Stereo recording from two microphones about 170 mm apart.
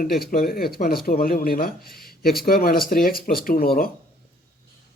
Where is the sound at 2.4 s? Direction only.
60° left (ahead or behind).